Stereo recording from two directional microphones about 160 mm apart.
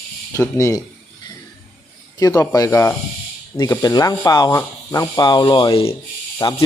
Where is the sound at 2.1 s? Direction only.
20° left (ahead or behind).